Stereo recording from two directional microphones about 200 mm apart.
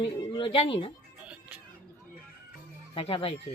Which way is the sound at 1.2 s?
5° right (ahead or behind).